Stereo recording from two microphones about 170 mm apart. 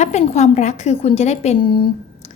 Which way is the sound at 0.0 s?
40° left (ahead or behind).